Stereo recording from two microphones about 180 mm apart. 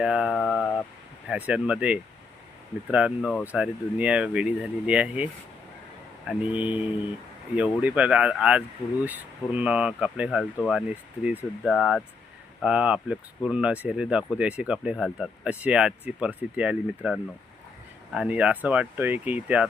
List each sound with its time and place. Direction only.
0.0 s speech: 5° right (ahead or behind)
0.3 s a sound: 5° left (ahead or behind)
1.3 s speech: 5° right (ahead or behind)